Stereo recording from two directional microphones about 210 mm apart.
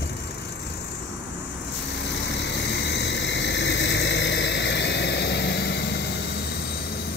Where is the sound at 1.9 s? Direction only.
55° left (ahead or behind).